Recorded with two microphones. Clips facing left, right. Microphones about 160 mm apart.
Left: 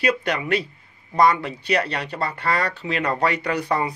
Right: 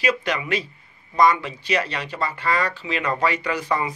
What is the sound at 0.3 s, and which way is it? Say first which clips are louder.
Speech: left 2 dB; 60° left (ahead or behind).